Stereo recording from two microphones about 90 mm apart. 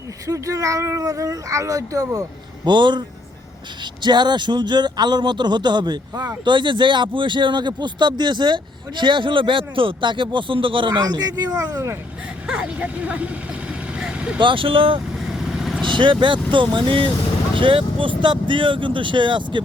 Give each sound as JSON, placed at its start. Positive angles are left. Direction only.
{"t": 0.3, "sound": "speech", "side_deg": -35}
{"t": 2.6, "sound": "speech", "side_deg": -60}
{"t": 4.0, "sound": "speech", "side_deg": -55}
{"t": 12.5, "sound": "vehicle", "side_deg": -10}
{"t": 14.3, "sound": "speech", "side_deg": -70}
{"t": 15.2, "sound": "vehicle", "side_deg": -5}
{"t": 15.8, "sound": "vehicle", "side_deg": -65}
{"t": 16.5, "sound": "speech", "side_deg": -65}
{"t": 18.2, "sound": "speech", "side_deg": -65}